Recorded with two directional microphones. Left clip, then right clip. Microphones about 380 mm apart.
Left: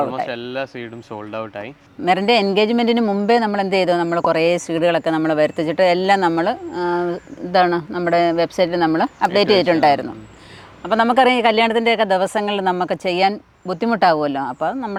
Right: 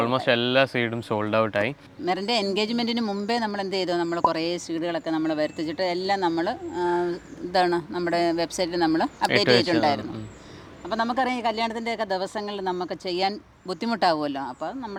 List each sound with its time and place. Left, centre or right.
0.0 s speech: right
2.0 s speech: left